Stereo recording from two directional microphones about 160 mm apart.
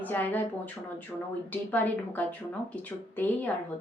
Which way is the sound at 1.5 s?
10° left (ahead or behind).